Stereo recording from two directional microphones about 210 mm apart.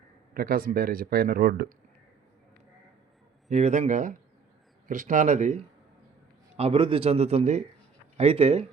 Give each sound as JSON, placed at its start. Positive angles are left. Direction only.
{"t": 0.3, "sound": "speech", "side_deg": -45}
{"t": 3.5, "sound": "speech", "side_deg": -35}
{"t": 6.6, "sound": "a man's voice", "side_deg": -25}